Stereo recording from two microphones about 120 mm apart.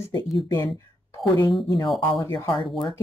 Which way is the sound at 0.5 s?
30° left (ahead or behind).